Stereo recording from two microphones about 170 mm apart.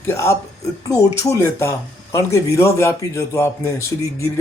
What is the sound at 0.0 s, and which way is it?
A man's voice, 15° left (ahead or behind).